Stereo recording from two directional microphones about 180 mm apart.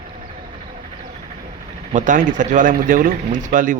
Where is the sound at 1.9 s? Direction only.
45° right (ahead or behind).